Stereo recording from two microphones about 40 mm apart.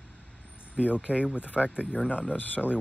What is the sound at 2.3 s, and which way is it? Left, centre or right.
Speech, left.